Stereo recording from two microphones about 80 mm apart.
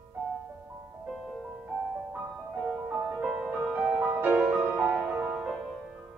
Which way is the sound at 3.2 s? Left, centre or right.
Centre.